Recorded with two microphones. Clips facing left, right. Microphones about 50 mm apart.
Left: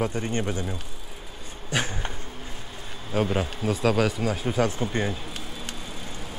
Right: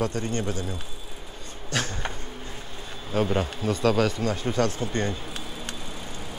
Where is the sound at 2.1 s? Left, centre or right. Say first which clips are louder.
Right 1 dB; centre.